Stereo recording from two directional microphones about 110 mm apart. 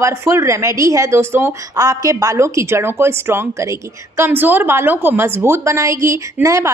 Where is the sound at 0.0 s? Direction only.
25° right (ahead or behind).